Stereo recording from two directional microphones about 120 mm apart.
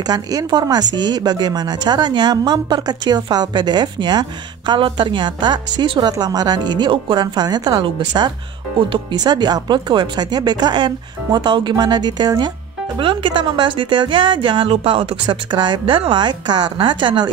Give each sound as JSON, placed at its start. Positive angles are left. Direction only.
{"t": 0.0, "sound": "a woman's voice", "side_deg": -30}